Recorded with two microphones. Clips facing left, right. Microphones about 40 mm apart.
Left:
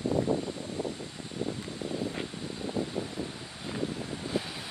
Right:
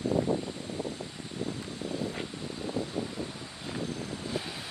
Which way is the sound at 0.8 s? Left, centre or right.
Centre.